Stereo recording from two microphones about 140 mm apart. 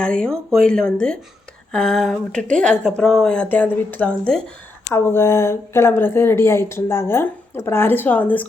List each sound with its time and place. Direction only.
0.0 s speech: 5° left (ahead or behind)
4.9 s speech: 20° left (ahead or behind)